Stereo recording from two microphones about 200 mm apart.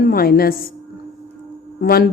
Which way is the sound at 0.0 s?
50° left (ahead or behind).